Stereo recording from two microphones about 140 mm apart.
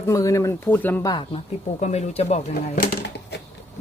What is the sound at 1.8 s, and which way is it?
Speech, 50° left (ahead or behind).